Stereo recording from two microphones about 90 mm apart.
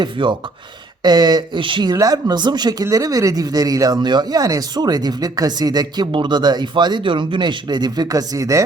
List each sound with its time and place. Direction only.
0.0 s speech: 65° right (ahead or behind)
1.0 s speech: 50° right (ahead or behind); by 1.9 s 70° right (ahead or behind)
1.9 s speech: 45° right (ahead or behind)
2.8 s speech: 40° right (ahead or behind)
6.1 s speech: 65° right (ahead or behind); by 8.6 s 40° right (ahead or behind)